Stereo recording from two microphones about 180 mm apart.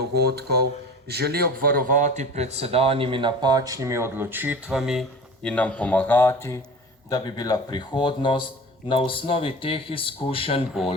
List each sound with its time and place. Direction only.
0.1 s speech: 65° right (ahead or behind); by 10.7 s 30° left (ahead or behind)